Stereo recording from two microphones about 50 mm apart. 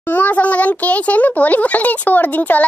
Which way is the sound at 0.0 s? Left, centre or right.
Left.